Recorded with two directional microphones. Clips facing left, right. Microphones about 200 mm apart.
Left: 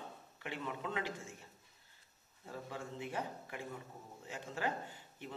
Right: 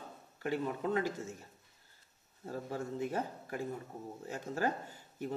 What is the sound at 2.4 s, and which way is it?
A man's voice, 40° right (ahead or behind).